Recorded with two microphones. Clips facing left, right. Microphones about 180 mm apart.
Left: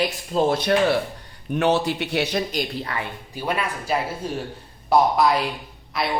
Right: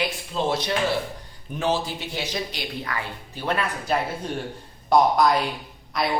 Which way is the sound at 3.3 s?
10° left (ahead or behind).